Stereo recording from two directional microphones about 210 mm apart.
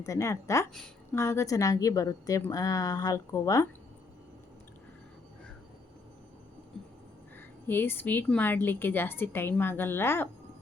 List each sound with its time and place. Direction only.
0.0 s a woman's voice: 15° left (ahead or behind)
6.8 s a sound: 5° left (ahead or behind)
7.3 s a woman's voice: 10° left (ahead or behind)